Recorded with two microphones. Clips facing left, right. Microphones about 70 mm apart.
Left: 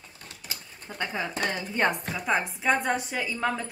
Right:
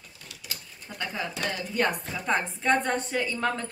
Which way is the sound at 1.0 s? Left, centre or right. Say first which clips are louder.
Left 2 dB; left.